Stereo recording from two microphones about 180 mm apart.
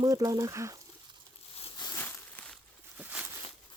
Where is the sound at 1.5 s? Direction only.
35° left (ahead or behind).